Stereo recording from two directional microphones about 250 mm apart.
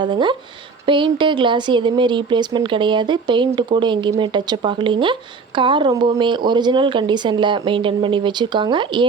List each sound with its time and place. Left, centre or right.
0.0 s speech: centre